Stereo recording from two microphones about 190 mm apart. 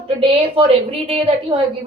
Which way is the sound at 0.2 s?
30° right (ahead or behind).